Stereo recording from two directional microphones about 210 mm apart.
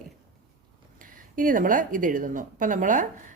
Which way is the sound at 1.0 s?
40° right (ahead or behind).